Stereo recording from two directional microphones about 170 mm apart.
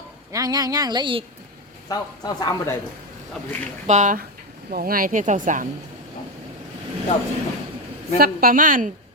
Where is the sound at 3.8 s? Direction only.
45° right (ahead or behind).